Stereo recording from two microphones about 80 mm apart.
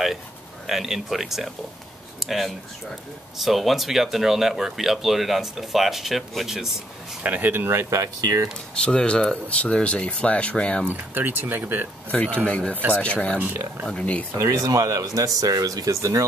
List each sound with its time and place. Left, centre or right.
0.7 s speech: centre
7.2 s speech: right
8.0 s speech: right
8.8 s speech: centre
10.9 s speech: right
12.1 s speech: centre
13.4 s speech: right
13.8 s speech: centre
14.3 s speech: right